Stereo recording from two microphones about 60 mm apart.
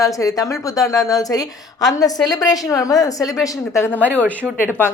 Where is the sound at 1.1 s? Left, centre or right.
Left.